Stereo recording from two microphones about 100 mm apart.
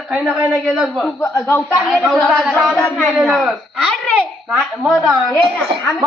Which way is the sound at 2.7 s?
15° left (ahead or behind).